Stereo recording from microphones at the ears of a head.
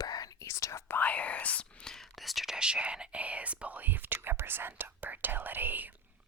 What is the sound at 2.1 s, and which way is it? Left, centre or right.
Speech, centre.